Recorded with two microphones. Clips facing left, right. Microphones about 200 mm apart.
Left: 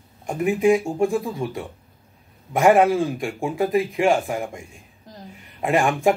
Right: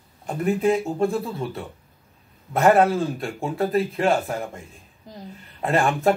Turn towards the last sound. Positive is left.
turn(degrees=15)  # may be behind; listen again after turning